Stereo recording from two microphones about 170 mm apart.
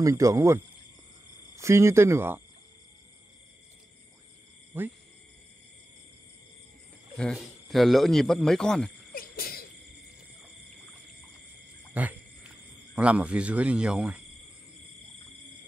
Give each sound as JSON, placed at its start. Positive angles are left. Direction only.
{"t": 0.0, "sound": "speech", "side_deg": -20}
{"t": 7.2, "sound": "a man's voice", "side_deg": 0}
{"t": 9.1, "sound": "cough", "side_deg": 60}
{"t": 11.9, "sound": "speech", "side_deg": -10}